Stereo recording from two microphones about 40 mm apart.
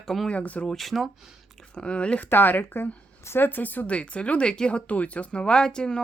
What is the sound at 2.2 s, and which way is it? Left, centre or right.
A woman's voice, left.